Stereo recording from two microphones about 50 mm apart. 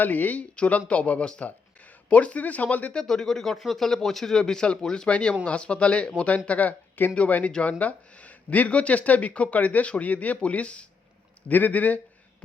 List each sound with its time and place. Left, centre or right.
0.0 s a man's voice: left
0.5 s speech: left
1.2 s speech: centre
1.5 s speech: left
2.9 s a man's voice: centre
11.4 s a man's voice: left